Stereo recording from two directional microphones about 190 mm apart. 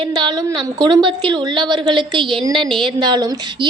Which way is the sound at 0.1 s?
20° right (ahead or behind).